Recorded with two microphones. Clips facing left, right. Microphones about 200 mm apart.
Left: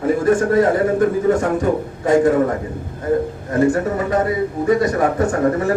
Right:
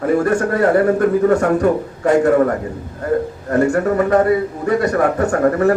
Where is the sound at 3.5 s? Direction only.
65° right (ahead or behind).